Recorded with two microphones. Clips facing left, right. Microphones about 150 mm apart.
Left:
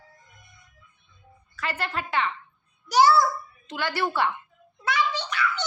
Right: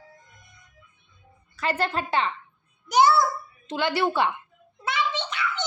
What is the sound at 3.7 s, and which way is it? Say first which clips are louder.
Speech: right 3 dB; 20° right (ahead or behind).